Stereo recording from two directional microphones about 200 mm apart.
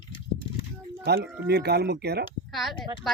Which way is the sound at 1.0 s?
55° right (ahead or behind).